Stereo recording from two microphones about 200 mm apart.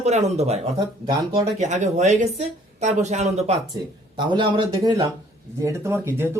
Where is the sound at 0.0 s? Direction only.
35° right (ahead or behind).